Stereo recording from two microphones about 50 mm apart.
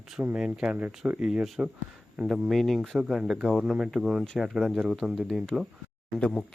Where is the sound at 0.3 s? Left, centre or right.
Centre.